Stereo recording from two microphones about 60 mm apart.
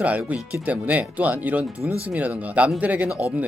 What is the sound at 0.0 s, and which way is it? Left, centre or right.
Speech, right.